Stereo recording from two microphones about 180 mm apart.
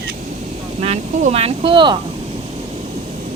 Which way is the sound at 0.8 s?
35° right (ahead or behind).